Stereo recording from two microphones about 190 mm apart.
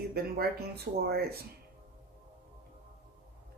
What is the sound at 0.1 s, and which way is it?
Speech, 55° right (ahead or behind).